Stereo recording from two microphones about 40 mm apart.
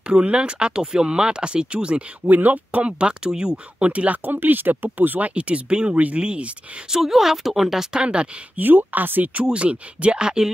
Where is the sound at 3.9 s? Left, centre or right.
Right.